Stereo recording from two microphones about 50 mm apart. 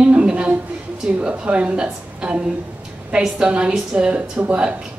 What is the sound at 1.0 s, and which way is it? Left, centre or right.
A woman's voice, centre.